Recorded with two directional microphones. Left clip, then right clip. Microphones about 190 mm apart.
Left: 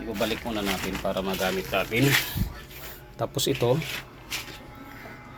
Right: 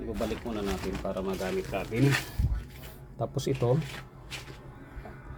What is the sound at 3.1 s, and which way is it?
Speech, 10° right (ahead or behind).